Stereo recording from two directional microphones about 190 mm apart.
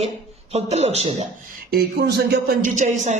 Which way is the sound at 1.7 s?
55° right (ahead or behind).